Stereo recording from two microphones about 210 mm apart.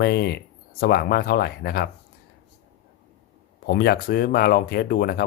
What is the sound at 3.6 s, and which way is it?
Speech, 50° left (ahead or behind).